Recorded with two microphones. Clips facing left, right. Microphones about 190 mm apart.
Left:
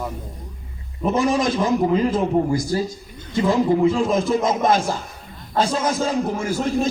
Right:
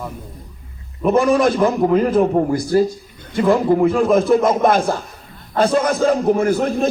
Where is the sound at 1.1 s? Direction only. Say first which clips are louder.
Right 5 dB; 60° right (ahead or behind).